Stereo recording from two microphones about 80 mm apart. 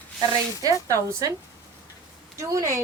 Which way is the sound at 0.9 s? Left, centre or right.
Right.